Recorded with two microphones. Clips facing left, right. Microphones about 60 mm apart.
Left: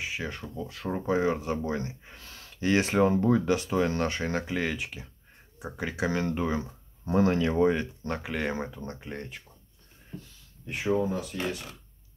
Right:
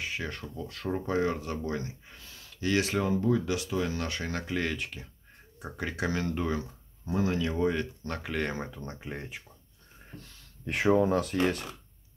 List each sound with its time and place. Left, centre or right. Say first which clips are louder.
0.0 s speech: left 1 dB; centre; by 2.2 s left
2.2 s a sound: left 3 dB; left
2.5 s speech: left 3 dB; left
4.5 s speech: left 1 dB; centre
7.1 s speech: left 5 dB; left
7.7 s speech: left 2 dB; left; by 9.4 s centre
10.2 s speech: right 5 dB; right